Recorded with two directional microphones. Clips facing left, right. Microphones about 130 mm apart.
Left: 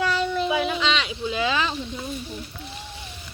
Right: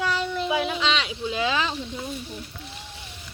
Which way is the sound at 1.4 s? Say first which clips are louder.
Left 1 dB; 20° right (ahead or behind).